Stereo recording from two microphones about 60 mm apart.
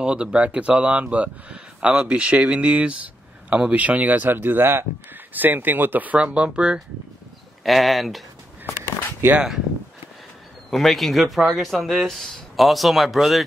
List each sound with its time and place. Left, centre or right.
0.0 s a man's voice: centre
6.2 s speech: centre
7.6 s speech: centre
10.7 s speech: centre